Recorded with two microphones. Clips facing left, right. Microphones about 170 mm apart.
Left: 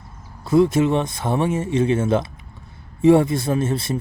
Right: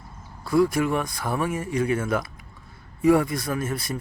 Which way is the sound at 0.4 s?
25° left (ahead or behind).